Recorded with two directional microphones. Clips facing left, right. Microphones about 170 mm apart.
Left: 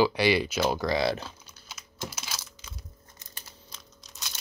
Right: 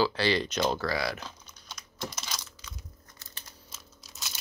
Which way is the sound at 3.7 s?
5° right (ahead or behind).